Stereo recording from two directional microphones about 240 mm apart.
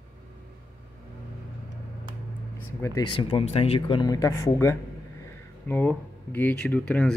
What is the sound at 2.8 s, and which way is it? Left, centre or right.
Speech, centre.